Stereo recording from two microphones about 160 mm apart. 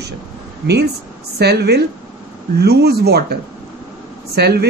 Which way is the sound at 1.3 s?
90° right.